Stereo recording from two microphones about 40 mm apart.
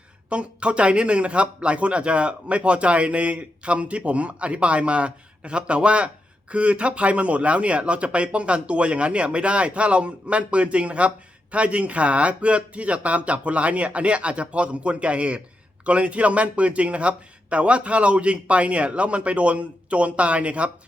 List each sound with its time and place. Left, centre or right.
0.3 s a man's voice: right